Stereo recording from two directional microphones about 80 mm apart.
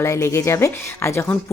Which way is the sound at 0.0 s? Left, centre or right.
Left.